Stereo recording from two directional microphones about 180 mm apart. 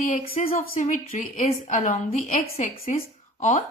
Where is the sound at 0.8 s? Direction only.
40° left (ahead or behind).